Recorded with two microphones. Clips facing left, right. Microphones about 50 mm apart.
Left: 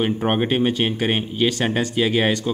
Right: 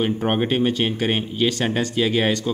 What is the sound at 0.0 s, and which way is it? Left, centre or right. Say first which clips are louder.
A man's voice: left 1 dB; centre.